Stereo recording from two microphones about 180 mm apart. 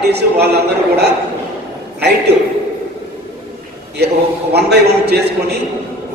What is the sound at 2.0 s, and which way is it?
Speech, 65° right (ahead or behind).